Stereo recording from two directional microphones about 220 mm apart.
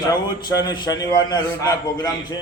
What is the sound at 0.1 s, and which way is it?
A man's voice, 20° left (ahead or behind).